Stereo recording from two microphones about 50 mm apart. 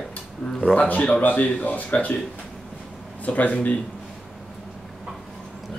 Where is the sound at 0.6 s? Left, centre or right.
Left.